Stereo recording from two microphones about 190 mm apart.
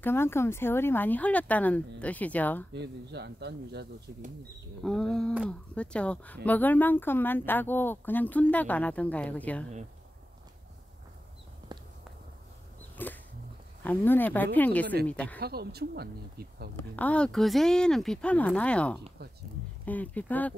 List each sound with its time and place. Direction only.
0.0 s speech: 10° left (ahead or behind)
2.7 s speech: 65° right (ahead or behind)
4.8 s speech: centre (ahead or behind)
11.7 s walk: 25° right (ahead or behind)
12.9 s dog: 10° left (ahead or behind)
13.8 s speech: 10° left (ahead or behind)
15.4 s speech: 55° right (ahead or behind)
16.7 s speech: 10° left (ahead or behind)